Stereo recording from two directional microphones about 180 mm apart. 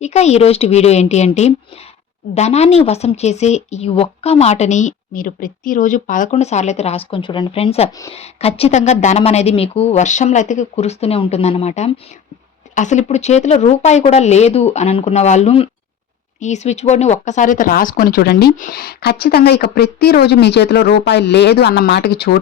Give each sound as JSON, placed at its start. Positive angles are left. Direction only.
{"t": 0.0, "sound": "speech", "side_deg": 40}